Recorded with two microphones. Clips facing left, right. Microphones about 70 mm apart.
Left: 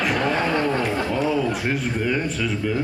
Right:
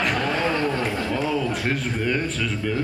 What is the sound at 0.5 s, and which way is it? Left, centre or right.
Speech, left.